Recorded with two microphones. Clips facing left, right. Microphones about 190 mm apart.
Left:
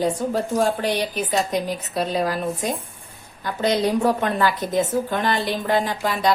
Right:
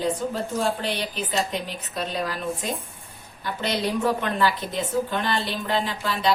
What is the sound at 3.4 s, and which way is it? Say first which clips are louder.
A woman's voice: left 6 dB; 45° left (ahead or behind).